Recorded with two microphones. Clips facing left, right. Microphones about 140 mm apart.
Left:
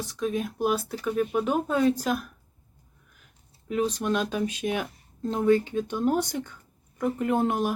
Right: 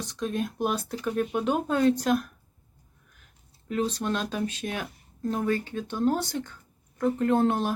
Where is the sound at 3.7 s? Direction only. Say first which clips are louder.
Left 2 dB; 10° left (ahead or behind).